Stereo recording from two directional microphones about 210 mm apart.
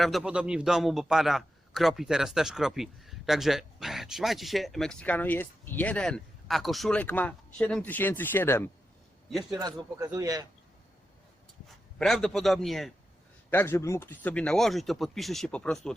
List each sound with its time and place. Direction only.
0.0 s a man's voice: centre (ahead or behind)
9.5 s speech: 20° right (ahead or behind)
11.9 s a man's voice: centre (ahead or behind)